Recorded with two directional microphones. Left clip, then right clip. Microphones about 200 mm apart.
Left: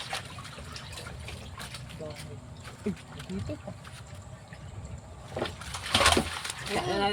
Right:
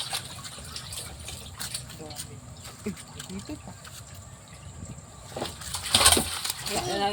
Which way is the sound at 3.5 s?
55° left (ahead or behind).